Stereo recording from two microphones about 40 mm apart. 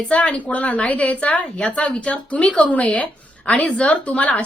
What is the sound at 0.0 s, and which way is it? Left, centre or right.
A woman's voice, left.